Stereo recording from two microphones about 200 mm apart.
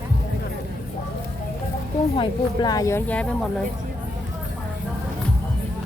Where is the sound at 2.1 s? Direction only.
25° left (ahead or behind); by 3.5 s 5° left (ahead or behind).